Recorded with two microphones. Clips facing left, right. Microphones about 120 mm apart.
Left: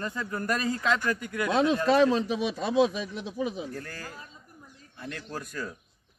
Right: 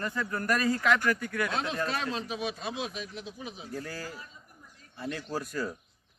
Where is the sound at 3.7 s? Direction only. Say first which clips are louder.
Right 1 dB; 5° right (ahead or behind).